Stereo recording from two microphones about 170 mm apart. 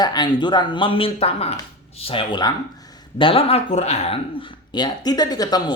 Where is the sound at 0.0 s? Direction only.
25° left (ahead or behind).